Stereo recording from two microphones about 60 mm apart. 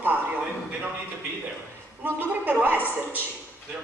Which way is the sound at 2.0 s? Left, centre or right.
Right.